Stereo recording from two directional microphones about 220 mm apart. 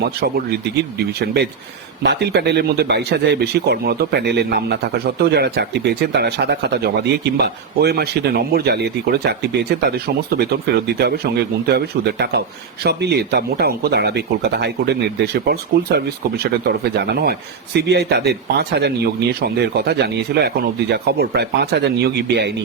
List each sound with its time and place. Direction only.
0.0 s speech: 45° right (ahead or behind)